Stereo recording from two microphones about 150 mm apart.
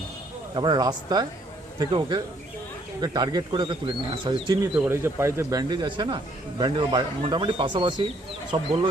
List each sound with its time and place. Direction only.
0.5 s speech: 30° right (ahead or behind)
4.7 s speech: 10° right (ahead or behind); by 8.7 s 40° right (ahead or behind)